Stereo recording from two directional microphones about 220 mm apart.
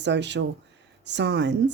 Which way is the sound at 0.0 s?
50° right (ahead or behind).